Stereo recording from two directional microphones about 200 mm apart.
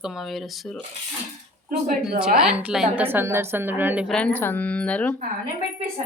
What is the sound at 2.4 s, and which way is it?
A woman's voice, 5° right (ahead or behind).